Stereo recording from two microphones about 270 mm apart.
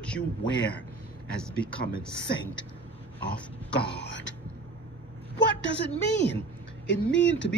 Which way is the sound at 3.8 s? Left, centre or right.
Left.